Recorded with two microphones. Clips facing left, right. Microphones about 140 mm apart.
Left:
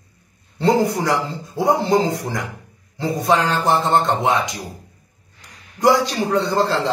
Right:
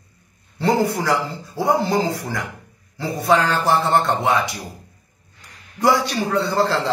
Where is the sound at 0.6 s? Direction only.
20° left (ahead or behind).